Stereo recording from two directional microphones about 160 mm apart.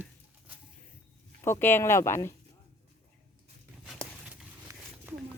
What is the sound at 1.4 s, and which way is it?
Speech, 15° left (ahead or behind).